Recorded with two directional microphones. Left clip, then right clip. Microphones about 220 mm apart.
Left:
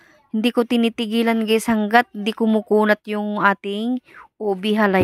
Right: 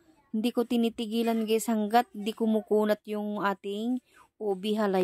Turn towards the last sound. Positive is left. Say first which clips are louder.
# left 10 dB
turn(degrees=15)  # may be behind; listen again after turning